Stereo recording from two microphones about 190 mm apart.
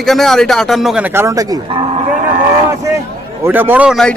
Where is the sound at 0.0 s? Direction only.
Centre (ahead or behind); by 1.8 s 20° right (ahead or behind).